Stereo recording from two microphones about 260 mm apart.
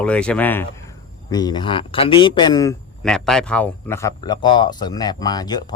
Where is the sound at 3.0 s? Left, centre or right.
Centre.